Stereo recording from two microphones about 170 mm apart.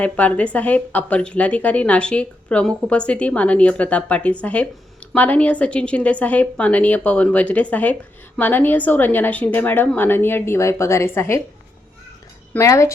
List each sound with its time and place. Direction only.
0.0 s a woman's voice: 10° left (ahead or behind)
12.5 s a woman's voice: 15° left (ahead or behind)